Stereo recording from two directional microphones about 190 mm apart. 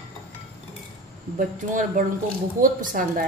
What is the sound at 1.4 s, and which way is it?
A woman's voice, 45° right (ahead or behind).